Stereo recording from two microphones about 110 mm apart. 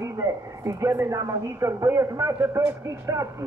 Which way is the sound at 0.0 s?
30° right (ahead or behind).